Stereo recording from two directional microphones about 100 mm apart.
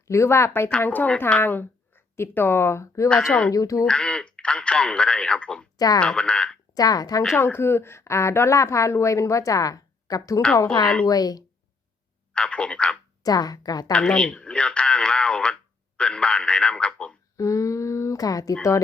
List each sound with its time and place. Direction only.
0.1 s a woman's voice: 30° left (ahead or behind)
3.8 s speech: 10° left (ahead or behind)
5.7 s speech: 40° left (ahead or behind)
6.0 s a woman's voice: 10° left (ahead or behind)
6.7 s a woman's voice: 40° left (ahead or behind)
7.3 s a woman's voice: 20° left (ahead or behind); by 11.4 s 40° left (ahead or behind)
12.3 s a woman's voice: 10° left (ahead or behind)
13.2 s a woman's voice: 40° left (ahead or behind)
13.9 s speech: 10° left (ahead or behind)
17.3 s a sound: 35° left (ahead or behind)